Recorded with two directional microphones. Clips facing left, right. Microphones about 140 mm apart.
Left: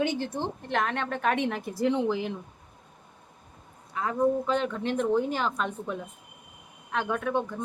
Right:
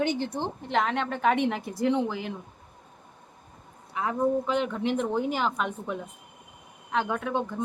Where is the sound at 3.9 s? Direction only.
5° right (ahead or behind).